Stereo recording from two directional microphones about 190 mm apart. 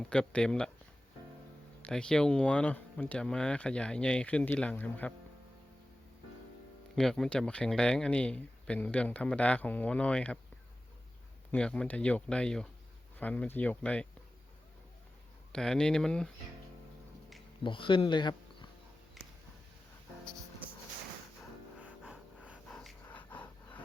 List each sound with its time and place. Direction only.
0.0 s speech: 5° left (ahead or behind)
1.8 s speech: 5° left (ahead or behind)
6.9 s speech: centre (ahead or behind)
11.5 s speech: 5° left (ahead or behind)
15.5 s speech: 5° left (ahead or behind)
17.6 s speech: 25° left (ahead or behind)
19.2 s a sound: centre (ahead or behind)
21.8 s music: 5° right (ahead or behind)
22.4 s dog: centre (ahead or behind)